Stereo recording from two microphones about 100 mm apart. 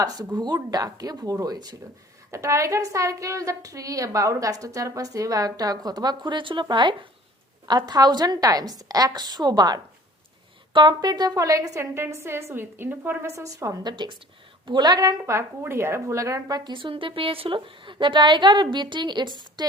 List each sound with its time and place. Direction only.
0.0 s a woman's voice: 40° right (ahead or behind)
2.3 s a woman's voice: 30° right (ahead or behind)
13.2 s a woman's voice: 30° right (ahead or behind)
13.8 s a woman's voice: 50° right (ahead or behind)
16.7 s a woman's voice: 60° right (ahead or behind)
19.6 s a sound: 45° right (ahead or behind)